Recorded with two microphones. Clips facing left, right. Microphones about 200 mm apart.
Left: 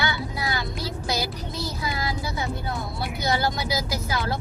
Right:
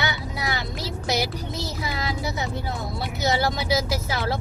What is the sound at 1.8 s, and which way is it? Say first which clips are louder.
Child singing: right 1 dB; 25° right (ahead or behind).